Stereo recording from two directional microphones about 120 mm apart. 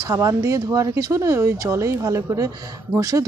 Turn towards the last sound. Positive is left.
turn(degrees=-25)  # may be behind; listen again after turning